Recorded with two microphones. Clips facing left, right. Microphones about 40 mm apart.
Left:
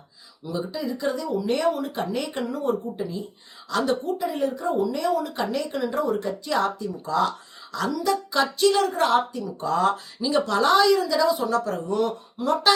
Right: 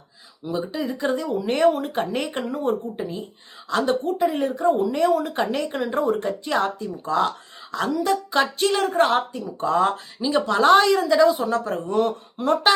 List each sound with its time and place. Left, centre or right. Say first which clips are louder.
0.4 s speech: right 2 dB; right
0.8 s a woman's voice: right 2 dB; right
10.2 s speech: right 4 dB; right
10.6 s a woman's voice: right 3 dB; right